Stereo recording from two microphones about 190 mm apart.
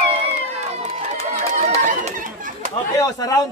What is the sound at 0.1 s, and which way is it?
Run, 35° right (ahead or behind).